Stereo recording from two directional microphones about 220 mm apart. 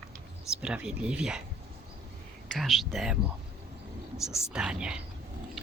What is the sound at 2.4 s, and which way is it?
Speech, centre (ahead or behind).